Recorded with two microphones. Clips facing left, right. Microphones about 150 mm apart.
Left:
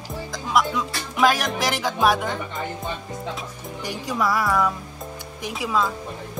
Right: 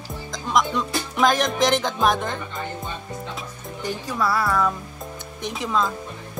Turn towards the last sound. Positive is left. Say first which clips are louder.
# left 1 dB
turn(degrees=5)  # may be behind; listen again after turning